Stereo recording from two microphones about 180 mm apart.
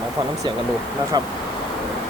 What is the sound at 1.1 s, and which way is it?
Speech, 20° right (ahead or behind).